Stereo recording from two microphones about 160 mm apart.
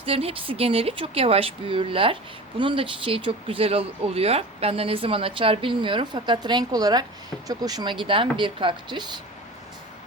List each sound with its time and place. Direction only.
0.0 s speech: 35° right (ahead or behind)